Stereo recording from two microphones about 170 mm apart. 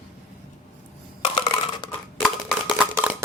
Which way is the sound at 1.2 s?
30° left (ahead or behind).